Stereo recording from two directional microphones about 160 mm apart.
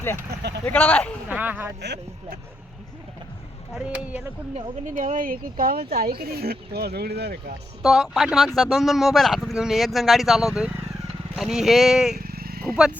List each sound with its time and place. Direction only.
0.3 s speech: 90° right
0.6 s speech: 10° left (ahead or behind)
1.4 s speech: 10° right (ahead or behind)
1.8 s speech: 90° right
3.8 s speech: 10° right (ahead or behind)
4.5 s speech: 50° right (ahead or behind); by 7.5 s 85° right
7.8 s speech: centre (ahead or behind)
12.1 s vehicle: 70° right (ahead or behind)
12.7 s speech: 5° right (ahead or behind)